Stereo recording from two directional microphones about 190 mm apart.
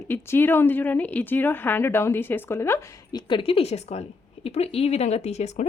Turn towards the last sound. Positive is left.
turn(degrees=35)  # may be behind; listen again after turning